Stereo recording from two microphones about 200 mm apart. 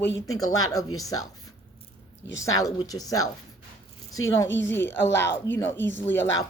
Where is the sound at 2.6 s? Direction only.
20° left (ahead or behind).